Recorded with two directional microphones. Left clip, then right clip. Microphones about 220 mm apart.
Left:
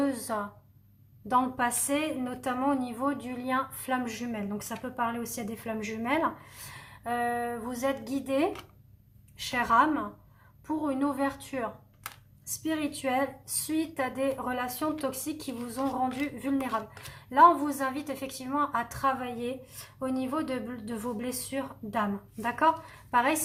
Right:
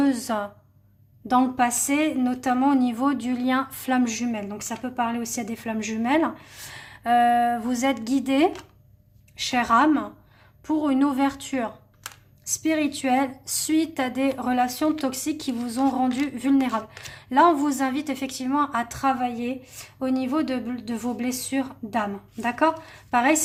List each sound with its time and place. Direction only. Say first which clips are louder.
0.0 s a woman's voice: right 6 dB; 40° right (ahead or behind)